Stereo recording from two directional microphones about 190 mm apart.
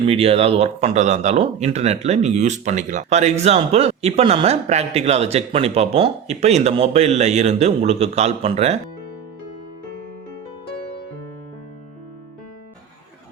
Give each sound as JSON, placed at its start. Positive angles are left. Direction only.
{"t": 0.0, "sound": "speech", "side_deg": -30}